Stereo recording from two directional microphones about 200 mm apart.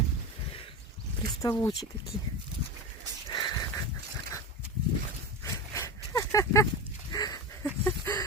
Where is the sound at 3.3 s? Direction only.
20° left (ahead or behind).